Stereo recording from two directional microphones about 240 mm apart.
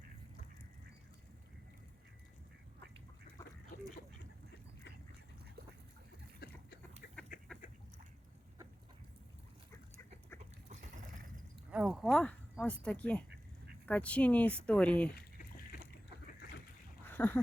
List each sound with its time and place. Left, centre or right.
3.7 s goose: left
6.4 s a sound: left
7.3 s duck: left
11.7 s speech: centre
17.1 s duck: centre